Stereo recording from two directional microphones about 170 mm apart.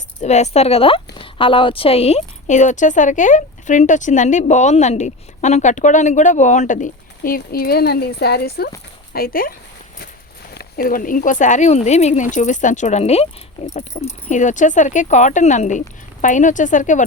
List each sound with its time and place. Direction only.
0.2 s speech: 40° left (ahead or behind)
14.3 s speech: 45° left (ahead or behind)